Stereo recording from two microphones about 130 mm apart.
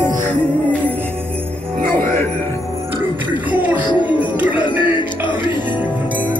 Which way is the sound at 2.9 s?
15° right (ahead or behind).